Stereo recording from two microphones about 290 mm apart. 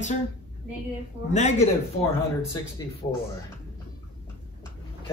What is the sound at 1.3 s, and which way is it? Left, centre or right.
Speech, left.